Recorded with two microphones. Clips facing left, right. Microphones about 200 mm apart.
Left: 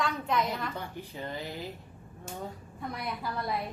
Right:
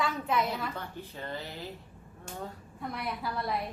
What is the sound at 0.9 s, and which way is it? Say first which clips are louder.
Speech: left 1 dB; 15° left (ahead or behind).